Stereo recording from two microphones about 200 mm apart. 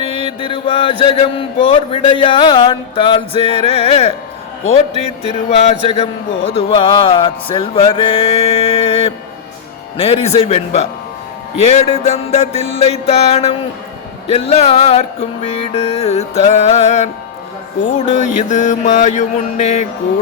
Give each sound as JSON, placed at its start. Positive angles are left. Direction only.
{"t": 0.4, "sound": "speech", "side_deg": 25}
{"t": 5.5, "sound": "speech", "side_deg": 35}
{"t": 10.0, "sound": "music", "side_deg": 30}